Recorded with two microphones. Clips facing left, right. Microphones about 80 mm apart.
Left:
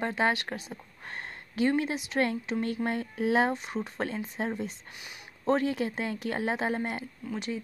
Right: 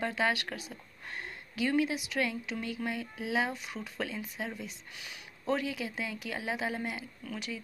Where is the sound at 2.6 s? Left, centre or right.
Left.